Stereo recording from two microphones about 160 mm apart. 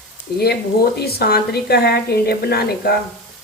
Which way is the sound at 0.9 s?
85° left.